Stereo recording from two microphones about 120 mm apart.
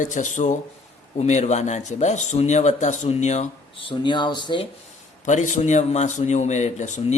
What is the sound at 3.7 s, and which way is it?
Speech, 45° left (ahead or behind).